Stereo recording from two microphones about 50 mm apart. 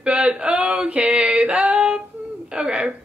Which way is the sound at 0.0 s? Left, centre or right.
Right.